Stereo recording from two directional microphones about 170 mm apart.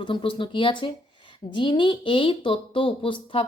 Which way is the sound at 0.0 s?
30° left (ahead or behind).